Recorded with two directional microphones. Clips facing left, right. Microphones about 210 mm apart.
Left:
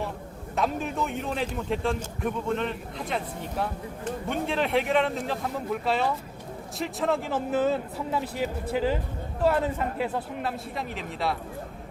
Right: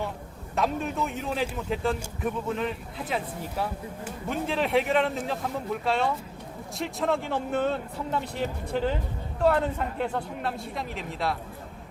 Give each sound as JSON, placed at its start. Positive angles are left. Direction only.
{"t": 0.5, "sound": "a man's voice", "side_deg": 0}